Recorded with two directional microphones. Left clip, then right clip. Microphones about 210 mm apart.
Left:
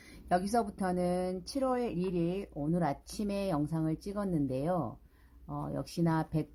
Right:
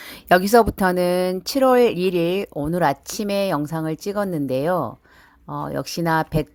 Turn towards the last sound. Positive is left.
turn(degrees=-35)  # may be behind; listen again after turning